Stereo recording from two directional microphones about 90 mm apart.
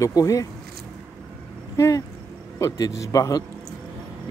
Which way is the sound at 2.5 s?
40° left (ahead or behind).